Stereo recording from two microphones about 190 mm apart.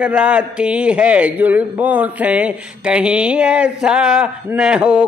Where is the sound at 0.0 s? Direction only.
5° right (ahead or behind).